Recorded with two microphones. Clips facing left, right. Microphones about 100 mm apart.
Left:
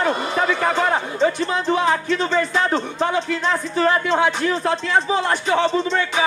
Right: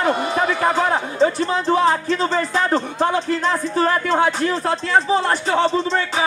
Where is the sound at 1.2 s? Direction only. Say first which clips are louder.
Right 3 dB; 35° right (ahead or behind).